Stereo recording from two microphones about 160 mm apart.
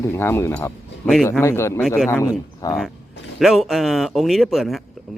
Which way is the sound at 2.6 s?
20° left (ahead or behind).